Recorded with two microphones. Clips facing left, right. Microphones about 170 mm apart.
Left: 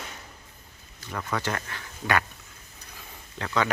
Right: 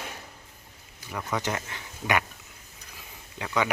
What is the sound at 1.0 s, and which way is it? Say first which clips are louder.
Speech: even; 10° right (ahead or behind).